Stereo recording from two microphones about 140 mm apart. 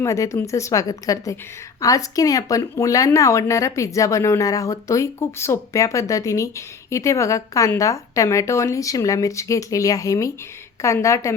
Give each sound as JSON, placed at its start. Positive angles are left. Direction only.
{"t": 0.0, "sound": "speech", "side_deg": 20}